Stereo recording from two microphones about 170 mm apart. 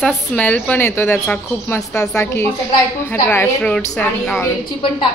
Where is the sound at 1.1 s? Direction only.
Centre (ahead or behind).